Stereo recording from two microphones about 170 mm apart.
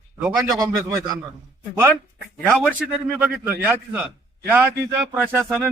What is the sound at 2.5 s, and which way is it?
A man's voice, 5° right (ahead or behind).